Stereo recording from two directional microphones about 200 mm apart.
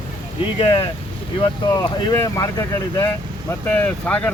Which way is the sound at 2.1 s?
15° left (ahead or behind).